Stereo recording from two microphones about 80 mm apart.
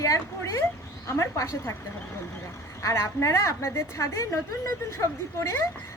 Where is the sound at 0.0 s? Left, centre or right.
Left.